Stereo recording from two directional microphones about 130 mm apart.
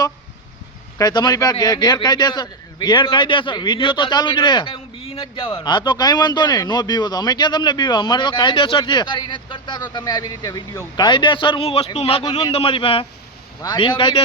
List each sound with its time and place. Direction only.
0.9 s a man's voice: 30° left (ahead or behind)
12.5 s a man's voice: 45° left (ahead or behind)